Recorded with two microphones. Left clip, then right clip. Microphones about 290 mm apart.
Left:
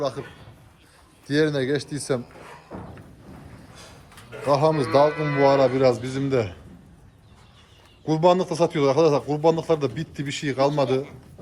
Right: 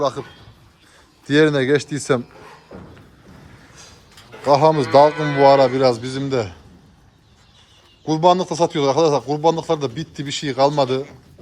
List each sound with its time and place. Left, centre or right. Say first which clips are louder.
0.0 s speech: right 6 dB; centre
1.3 s speech: right 7 dB; right
4.4 s speech: right 6 dB; right
5.0 s speech: right 5 dB; right
5.4 s speech: right 5 dB; centre
8.0 s speech: right 4 dB; centre